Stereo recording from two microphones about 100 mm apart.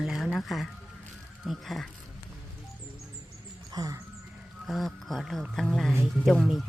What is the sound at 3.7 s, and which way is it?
Speech, 35° right (ahead or behind).